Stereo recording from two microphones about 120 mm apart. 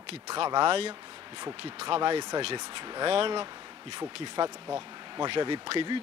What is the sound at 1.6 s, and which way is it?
Speech, 55° right (ahead or behind).